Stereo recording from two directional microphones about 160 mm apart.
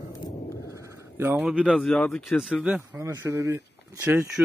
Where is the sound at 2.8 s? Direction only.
15° right (ahead or behind).